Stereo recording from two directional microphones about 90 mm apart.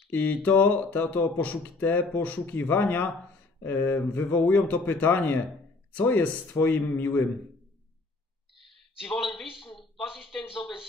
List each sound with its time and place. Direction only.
0.1 s speech: 20° left (ahead or behind)
9.5 s speech: 5° right (ahead or behind)